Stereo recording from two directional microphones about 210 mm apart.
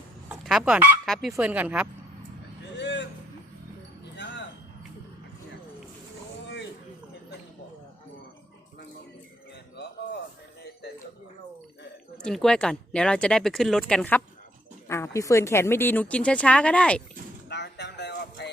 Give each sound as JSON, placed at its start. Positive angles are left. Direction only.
{"t": 0.3, "sound": "speech", "side_deg": -5}
{"t": 2.7, "sound": "vehicle", "side_deg": 55}
{"t": 12.1, "sound": "a woman's voice", "side_deg": 5}
{"t": 17.5, "sound": "a sound", "side_deg": 55}